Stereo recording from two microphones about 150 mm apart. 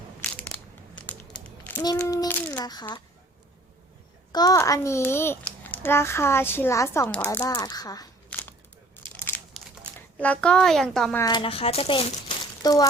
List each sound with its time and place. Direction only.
0.3 s crumpling: 10° left (ahead or behind)
1.5 s a sound: 10° left (ahead or behind)
2.0 s child singing: 15° left (ahead or behind)
4.3 s a child's voice: 25° left (ahead or behind)
8.3 s a sound: 10° left (ahead or behind)
9.1 s crumpling: 10° left (ahead or behind)
10.2 s a child's voice: 5° left (ahead or behind)
11.2 s speech: 30° left (ahead or behind)
12.6 s speech: 25° left (ahead or behind)